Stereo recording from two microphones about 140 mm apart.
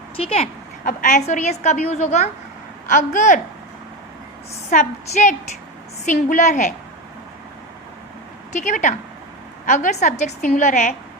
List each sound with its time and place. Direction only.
0.2 s a woman's voice: 45° left (ahead or behind)
0.9 s a woman's voice: 65° left (ahead or behind)
4.7 s a woman's voice: 65° left (ahead or behind)
8.5 s a woman's voice: 65° left (ahead or behind)